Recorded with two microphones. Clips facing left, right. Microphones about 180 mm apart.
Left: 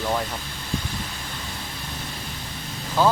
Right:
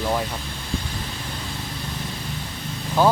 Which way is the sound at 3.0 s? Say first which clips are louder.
Right 2 dB; 15° right (ahead or behind).